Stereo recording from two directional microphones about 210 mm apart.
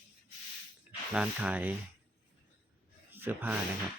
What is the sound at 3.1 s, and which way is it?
Speech, 10° right (ahead or behind).